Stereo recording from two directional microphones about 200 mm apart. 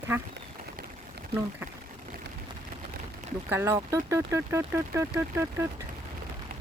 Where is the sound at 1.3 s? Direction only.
30° right (ahead or behind).